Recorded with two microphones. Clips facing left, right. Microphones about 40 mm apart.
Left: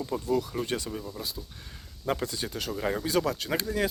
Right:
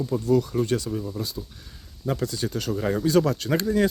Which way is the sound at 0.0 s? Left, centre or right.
Left.